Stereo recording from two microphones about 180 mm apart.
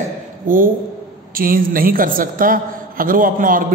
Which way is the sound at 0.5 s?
50° right (ahead or behind).